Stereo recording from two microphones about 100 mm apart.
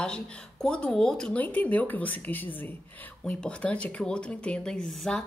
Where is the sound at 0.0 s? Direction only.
10° left (ahead or behind).